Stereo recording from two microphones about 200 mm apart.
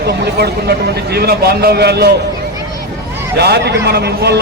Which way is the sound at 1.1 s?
55° right (ahead or behind).